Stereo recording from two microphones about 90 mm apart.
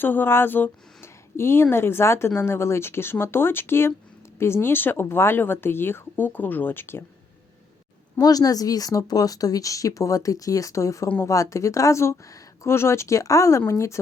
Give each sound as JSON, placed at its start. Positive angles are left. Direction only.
{"t": 0.0, "sound": "speech", "side_deg": 20}
{"t": 8.2, "sound": "speech", "side_deg": 45}